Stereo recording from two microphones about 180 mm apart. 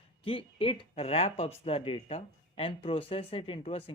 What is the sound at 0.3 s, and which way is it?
Speech, 30° left (ahead or behind).